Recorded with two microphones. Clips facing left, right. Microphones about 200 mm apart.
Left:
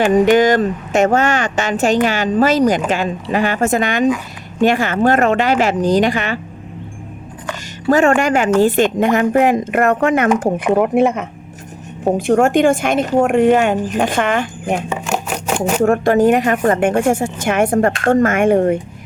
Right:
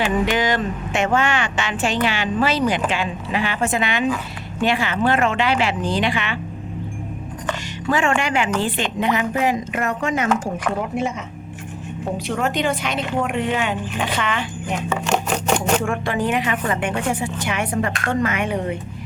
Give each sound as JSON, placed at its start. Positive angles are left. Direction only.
{"t": 0.0, "sound": "speech", "side_deg": 45}
{"t": 7.9, "sound": "speech", "side_deg": 40}
{"t": 12.1, "sound": "speech", "side_deg": 50}
{"t": 14.9, "sound": "a sound", "side_deg": 5}
{"t": 15.8, "sound": "speech", "side_deg": 45}